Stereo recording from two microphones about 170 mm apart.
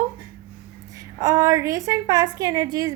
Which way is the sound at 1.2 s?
20° right (ahead or behind).